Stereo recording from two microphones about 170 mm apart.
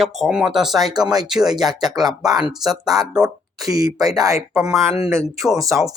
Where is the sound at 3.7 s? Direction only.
20° right (ahead or behind).